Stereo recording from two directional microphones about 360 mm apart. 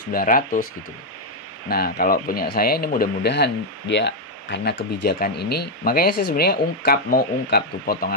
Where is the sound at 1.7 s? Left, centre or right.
Left.